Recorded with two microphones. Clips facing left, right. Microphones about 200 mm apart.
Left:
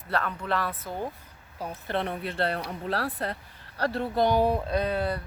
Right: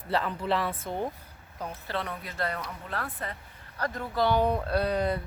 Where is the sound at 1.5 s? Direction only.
10° left (ahead or behind).